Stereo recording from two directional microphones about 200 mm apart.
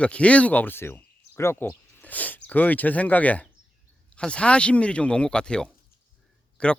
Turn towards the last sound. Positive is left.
turn(degrees=5)  # may be behind; listen again after turning